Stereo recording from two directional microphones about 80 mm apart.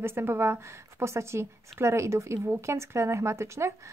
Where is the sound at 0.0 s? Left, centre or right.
Right.